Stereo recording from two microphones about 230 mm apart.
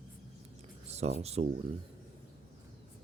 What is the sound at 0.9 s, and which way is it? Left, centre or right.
Speech, right.